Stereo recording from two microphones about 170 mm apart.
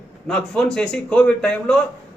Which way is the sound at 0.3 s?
5° left (ahead or behind).